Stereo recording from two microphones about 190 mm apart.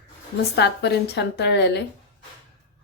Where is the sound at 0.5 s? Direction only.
65° left (ahead or behind).